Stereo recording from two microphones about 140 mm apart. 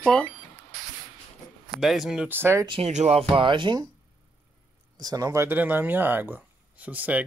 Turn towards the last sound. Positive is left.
turn(degrees=-10)  # may be behind; listen again after turning